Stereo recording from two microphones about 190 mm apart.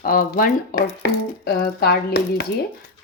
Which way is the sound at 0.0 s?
45° left (ahead or behind).